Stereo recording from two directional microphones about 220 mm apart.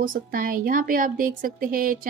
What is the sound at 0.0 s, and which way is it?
Speech, 40° right (ahead or behind).